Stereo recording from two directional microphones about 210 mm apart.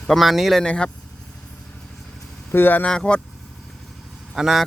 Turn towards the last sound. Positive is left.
turn(degrees=0)  # may be behind; listen again after turning